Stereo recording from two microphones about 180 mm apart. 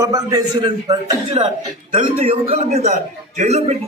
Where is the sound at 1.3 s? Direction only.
45° right (ahead or behind).